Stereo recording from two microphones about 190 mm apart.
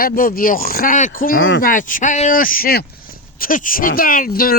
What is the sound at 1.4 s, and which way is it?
Speech, 90° left.